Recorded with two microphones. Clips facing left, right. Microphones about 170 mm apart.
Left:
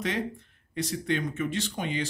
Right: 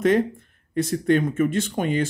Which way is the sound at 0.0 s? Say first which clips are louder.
Right 11 dB; 50° right (ahead or behind).